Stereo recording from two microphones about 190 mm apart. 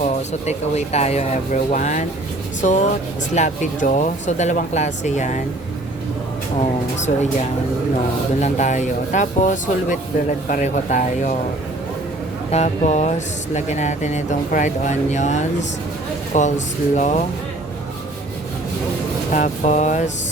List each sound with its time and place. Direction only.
0.0 s speech: 35° left (ahead or behind)
6.6 s speech: 35° left (ahead or behind)
8.4 s speech: 40° left (ahead or behind)
12.5 s speech: 35° left (ahead or behind)
19.3 s speech: 40° left (ahead or behind)